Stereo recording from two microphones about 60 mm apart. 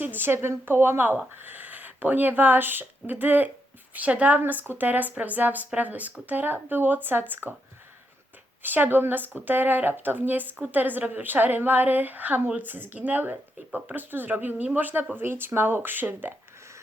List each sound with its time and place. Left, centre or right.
0.0 s a woman's voice: right
8.6 s speech: right